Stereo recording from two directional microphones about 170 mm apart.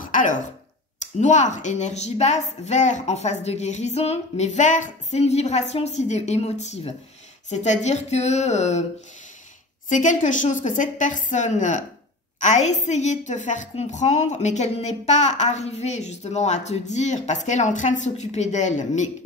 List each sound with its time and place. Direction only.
0.1 s throat clearing: 50° left (ahead or behind)
1.2 s a woman's voice: 45° left (ahead or behind)
9.8 s a woman's voice: 45° left (ahead or behind)